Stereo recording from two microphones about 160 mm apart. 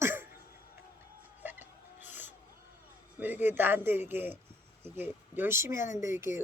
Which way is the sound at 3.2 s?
10° right (ahead or behind).